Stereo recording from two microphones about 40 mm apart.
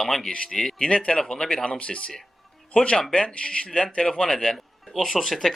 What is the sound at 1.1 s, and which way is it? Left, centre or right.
Speech, centre.